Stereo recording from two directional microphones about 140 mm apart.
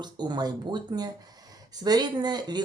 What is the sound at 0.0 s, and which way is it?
Speech, 30° right (ahead or behind).